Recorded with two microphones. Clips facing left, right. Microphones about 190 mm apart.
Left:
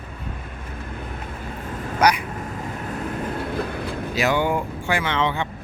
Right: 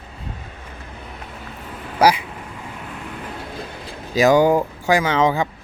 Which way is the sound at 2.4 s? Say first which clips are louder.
Left 4 dB; 45° left (ahead or behind).